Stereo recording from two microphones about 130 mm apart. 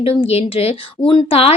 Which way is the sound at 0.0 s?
50° left (ahead or behind).